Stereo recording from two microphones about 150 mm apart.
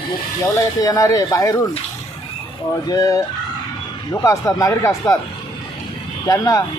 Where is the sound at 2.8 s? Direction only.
25° left (ahead or behind).